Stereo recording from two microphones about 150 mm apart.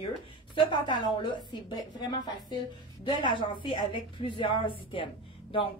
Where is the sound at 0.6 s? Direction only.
35° left (ahead or behind).